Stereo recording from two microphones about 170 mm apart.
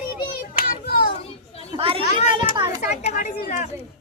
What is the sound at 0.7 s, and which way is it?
Children playing, 60° left (ahead or behind).